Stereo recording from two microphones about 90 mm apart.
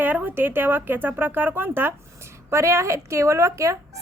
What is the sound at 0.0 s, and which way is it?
A woman's voice, 20° right (ahead or behind).